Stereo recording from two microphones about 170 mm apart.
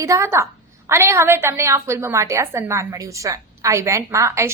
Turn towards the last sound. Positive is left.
turn(degrees=-15)  # may be behind; listen again after turning